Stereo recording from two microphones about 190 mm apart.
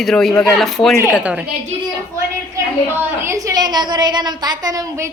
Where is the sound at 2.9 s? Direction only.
15° right (ahead or behind).